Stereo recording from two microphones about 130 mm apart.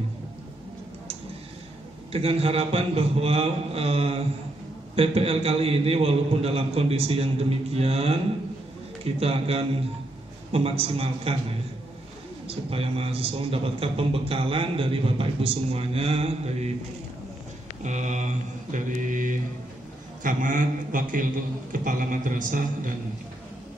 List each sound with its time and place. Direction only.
2.1 s a man's voice: 50° right (ahead or behind)
12.4 s a man's voice: 50° right (ahead or behind)
17.8 s mantra: 65° right (ahead or behind)
20.2 s a man's voice: 85° right